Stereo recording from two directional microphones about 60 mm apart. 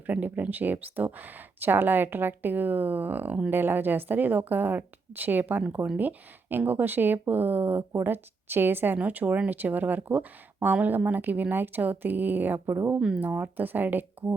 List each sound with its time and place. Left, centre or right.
0.0 s speech: right
9.0 s speech: right
13.1 s speech: right